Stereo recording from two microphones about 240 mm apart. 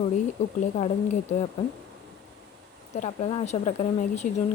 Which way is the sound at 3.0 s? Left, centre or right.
Left.